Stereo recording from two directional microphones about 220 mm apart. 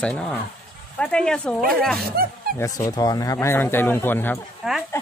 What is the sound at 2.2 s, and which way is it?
Speech, 45° right (ahead or behind).